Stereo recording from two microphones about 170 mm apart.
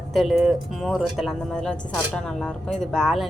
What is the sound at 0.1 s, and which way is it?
Speech, centre (ahead or behind).